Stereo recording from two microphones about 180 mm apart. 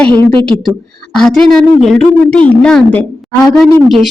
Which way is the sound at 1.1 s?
5° left (ahead or behind).